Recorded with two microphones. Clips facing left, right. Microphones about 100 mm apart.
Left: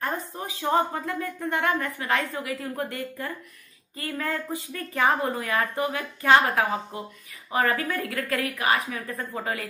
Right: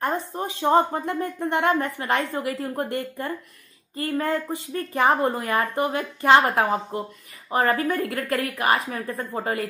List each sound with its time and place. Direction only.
0.0 s a woman's voice: 20° right (ahead or behind)
3.9 s a woman's voice: 25° right (ahead or behind)
9.4 s a woman's voice: 40° right (ahead or behind)